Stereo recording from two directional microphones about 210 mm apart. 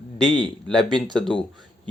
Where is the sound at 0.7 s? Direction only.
Centre (ahead or behind).